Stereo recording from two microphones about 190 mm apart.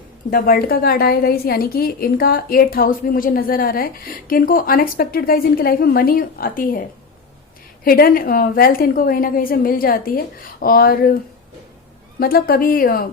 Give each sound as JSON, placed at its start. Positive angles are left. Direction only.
{"t": 0.3, "sound": "a woman's voice", "side_deg": 50}
{"t": 7.9, "sound": "a woman's voice", "side_deg": 50}
{"t": 12.2, "sound": "a woman's voice", "side_deg": 50}